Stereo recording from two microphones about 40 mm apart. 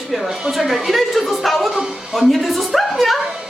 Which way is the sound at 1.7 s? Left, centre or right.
Centre.